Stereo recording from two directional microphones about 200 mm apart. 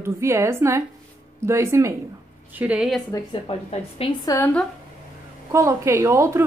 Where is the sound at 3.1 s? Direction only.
25° left (ahead or behind).